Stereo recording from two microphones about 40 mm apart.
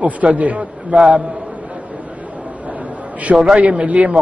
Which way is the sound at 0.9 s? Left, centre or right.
Centre.